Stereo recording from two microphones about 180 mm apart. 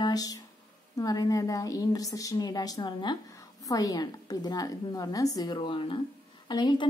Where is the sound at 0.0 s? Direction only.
20° left (ahead or behind).